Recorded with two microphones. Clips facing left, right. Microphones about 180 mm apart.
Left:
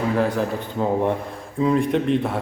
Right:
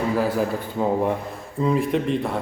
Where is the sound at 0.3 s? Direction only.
Centre (ahead or behind).